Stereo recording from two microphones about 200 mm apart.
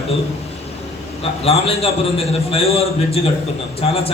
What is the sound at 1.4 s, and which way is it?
A man's voice, 30° left (ahead or behind).